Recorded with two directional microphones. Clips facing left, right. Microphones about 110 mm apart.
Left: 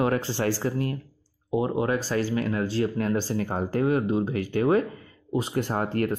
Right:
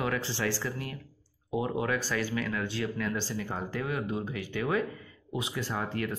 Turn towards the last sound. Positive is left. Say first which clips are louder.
# left 7 dB
turn(degrees=50)  # may be behind; listen again after turning